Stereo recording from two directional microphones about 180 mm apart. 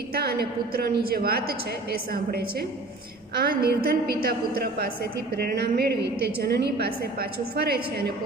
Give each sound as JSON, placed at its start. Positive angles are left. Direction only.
{"t": 0.1, "sound": "a woman's voice", "side_deg": -60}